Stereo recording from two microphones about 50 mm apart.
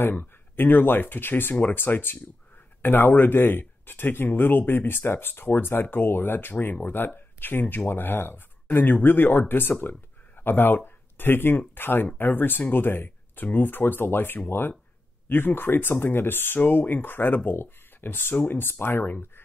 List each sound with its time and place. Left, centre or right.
0.0 s speech: left